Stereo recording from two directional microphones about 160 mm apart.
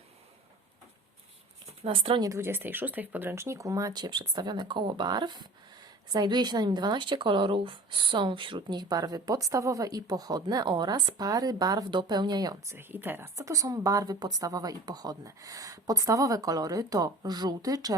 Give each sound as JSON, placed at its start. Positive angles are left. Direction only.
{"t": 1.8, "sound": "speech", "side_deg": -35}
{"t": 2.3, "sound": "a woman's voice", "side_deg": -15}